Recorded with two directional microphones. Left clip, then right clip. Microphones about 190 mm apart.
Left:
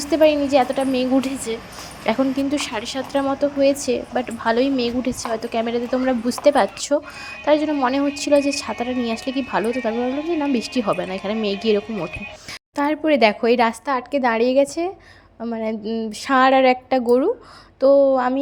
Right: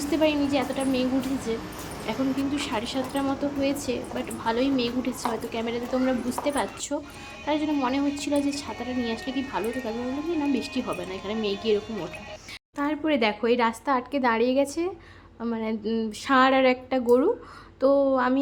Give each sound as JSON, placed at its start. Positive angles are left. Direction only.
{"t": 0.0, "sound": "a woman's voice", "side_deg": 30}
{"t": 16.2, "sound": "speech", "side_deg": 25}